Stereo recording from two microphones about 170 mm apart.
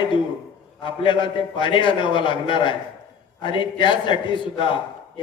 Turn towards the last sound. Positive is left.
turn(degrees=30)  # may be behind; listen again after turning